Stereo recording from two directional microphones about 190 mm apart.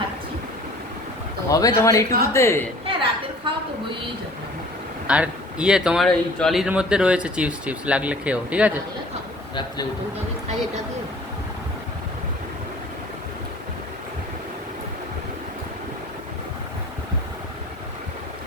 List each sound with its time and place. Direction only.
1.5 s speech: 15° left (ahead or behind)
2.8 s a sound: 30° right (ahead or behind)
5.0 s speech: 5° right (ahead or behind)